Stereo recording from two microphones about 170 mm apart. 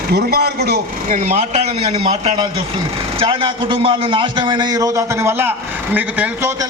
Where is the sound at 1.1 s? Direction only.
45° right (ahead or behind).